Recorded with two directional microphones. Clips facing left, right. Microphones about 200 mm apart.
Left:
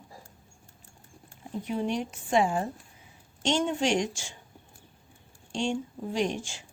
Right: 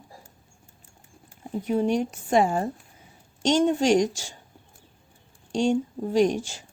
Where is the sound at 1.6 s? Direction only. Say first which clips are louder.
Right 7 dB; 45° right (ahead or behind).